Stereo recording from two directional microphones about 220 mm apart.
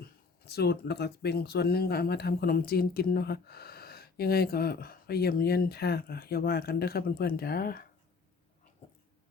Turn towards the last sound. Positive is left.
turn(degrees=40)  # may be behind; listen again after turning